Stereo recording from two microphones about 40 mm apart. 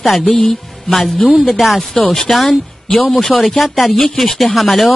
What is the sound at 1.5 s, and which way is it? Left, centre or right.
Speech, centre.